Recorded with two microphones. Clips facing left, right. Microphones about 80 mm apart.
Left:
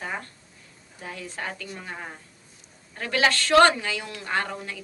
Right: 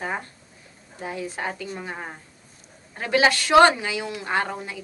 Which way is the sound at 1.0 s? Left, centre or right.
Centre.